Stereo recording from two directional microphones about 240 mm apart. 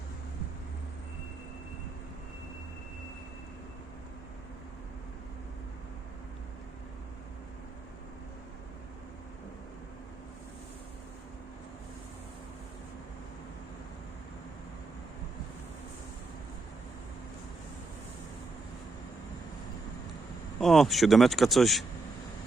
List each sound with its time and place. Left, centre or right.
20.6 s speech: centre